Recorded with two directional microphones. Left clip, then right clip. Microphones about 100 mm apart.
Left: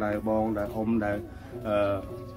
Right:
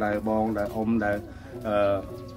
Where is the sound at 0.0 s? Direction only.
25° right (ahead or behind).